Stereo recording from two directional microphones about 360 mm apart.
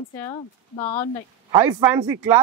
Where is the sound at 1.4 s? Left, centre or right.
Centre.